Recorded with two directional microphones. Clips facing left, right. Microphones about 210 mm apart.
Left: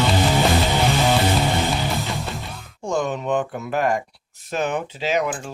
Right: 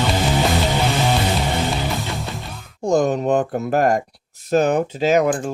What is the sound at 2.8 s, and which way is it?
Speech, 40° right (ahead or behind).